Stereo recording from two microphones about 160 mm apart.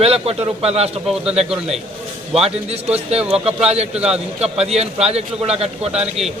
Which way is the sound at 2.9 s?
40° right (ahead or behind).